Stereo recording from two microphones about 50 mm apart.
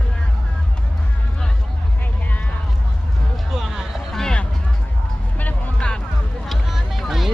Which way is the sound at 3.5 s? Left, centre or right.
Centre.